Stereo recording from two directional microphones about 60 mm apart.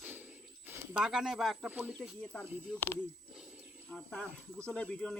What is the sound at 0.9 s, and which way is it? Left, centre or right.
Speech, centre.